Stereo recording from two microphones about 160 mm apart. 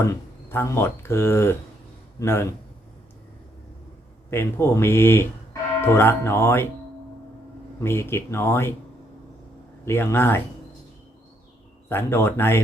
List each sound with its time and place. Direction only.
0.0 s a man's voice: 15° left (ahead or behind)
4.3 s speech: 15° left (ahead or behind)
7.8 s speech: 15° left (ahead or behind)
9.8 s speech: 15° left (ahead or behind)
11.9 s speech: 15° left (ahead or behind)